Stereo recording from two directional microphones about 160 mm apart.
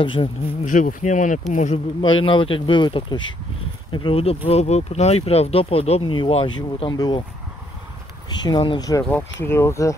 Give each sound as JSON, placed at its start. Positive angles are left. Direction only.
{"t": 0.0, "sound": "speech", "side_deg": 30}
{"t": 0.7, "sound": "speech", "side_deg": 55}
{"t": 2.0, "sound": "speech", "side_deg": 35}
{"t": 8.3, "sound": "speech", "side_deg": 25}